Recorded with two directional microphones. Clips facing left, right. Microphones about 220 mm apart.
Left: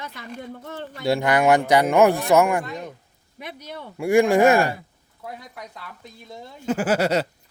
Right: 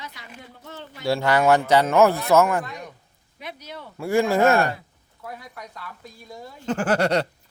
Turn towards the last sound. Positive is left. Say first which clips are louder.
# even
turn(degrees=5)  # may be behind; listen again after turning